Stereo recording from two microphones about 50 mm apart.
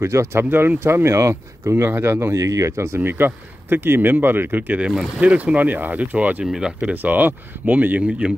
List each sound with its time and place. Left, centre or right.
0.0 s speech: right
0.5 s speech: right
0.7 s speech: right
2.3 s speech: right
3.0 s speech: right
5.2 s speech: right
6.4 s speech: centre
6.8 s speech: right